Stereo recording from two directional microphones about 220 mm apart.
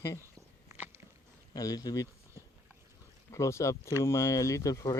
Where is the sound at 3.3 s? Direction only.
15° left (ahead or behind).